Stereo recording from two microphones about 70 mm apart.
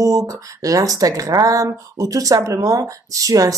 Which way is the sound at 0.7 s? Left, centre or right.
Right.